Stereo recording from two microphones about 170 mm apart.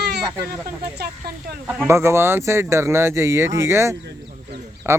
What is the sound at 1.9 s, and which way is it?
Speech, 15° right (ahead or behind).